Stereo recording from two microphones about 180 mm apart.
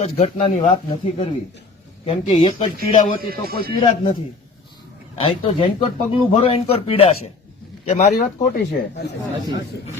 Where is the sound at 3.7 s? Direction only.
30° left (ahead or behind).